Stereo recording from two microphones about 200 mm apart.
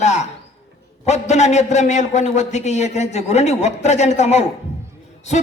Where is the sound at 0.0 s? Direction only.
35° left (ahead or behind).